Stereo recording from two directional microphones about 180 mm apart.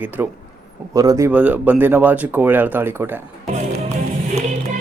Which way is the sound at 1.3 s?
10° right (ahead or behind).